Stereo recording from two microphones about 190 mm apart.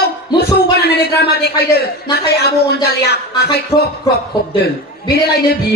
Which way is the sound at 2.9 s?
55° left (ahead or behind).